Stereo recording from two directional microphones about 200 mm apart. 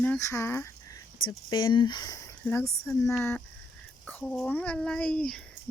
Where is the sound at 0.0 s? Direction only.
10° left (ahead or behind).